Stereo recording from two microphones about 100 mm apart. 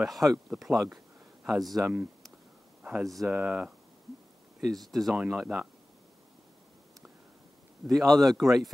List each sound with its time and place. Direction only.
0.0 s speech: centre (ahead or behind)
0.9 s a sound: centre (ahead or behind)
1.8 s speech: 20° right (ahead or behind)
2.8 s a sound: 10° right (ahead or behind)
3.3 s speech: 10° right (ahead or behind)
4.6 s speech: centre (ahead or behind)
5.1 s speech: 10° right (ahead or behind)
7.8 s speech: centre (ahead or behind)